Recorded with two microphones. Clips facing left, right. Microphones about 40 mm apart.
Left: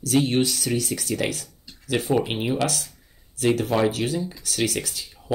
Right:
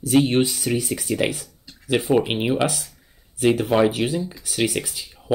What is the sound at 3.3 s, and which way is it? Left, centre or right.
Speech, centre.